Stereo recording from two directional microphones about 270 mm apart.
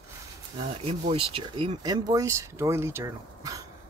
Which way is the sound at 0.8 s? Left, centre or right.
Right.